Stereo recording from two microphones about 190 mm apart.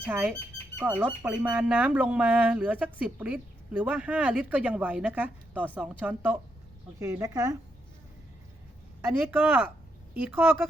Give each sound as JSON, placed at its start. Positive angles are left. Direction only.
{"t": 0.1, "sound": "squawk", "side_deg": -10}
{"t": 9.0, "sound": "squawk", "side_deg": -10}